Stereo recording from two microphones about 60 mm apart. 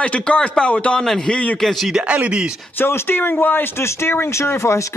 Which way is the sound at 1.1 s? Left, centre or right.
Centre.